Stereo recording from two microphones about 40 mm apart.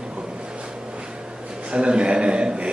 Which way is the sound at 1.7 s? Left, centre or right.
Right.